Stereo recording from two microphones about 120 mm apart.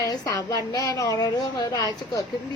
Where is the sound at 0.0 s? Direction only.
30° left (ahead or behind).